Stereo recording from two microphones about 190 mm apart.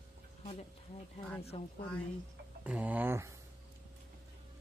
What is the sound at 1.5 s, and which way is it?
Speech, 30° left (ahead or behind).